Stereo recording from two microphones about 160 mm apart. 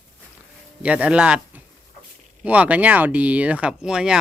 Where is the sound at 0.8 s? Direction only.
10° right (ahead or behind).